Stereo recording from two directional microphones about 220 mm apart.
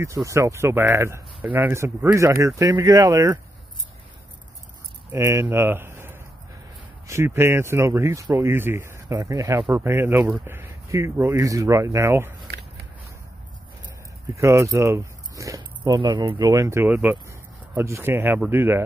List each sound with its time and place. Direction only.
0.0 s speech: 15° right (ahead or behind)
5.1 s speech: 10° right (ahead or behind)
14.3 s speech: 15° right (ahead or behind)